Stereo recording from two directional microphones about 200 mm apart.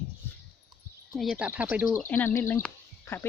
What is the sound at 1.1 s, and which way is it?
Speech, centre (ahead or behind).